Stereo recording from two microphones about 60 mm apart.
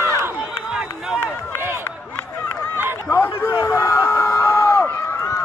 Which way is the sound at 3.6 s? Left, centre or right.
Left.